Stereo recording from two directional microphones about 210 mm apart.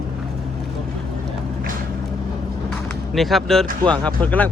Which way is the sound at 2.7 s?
Centre (ahead or behind).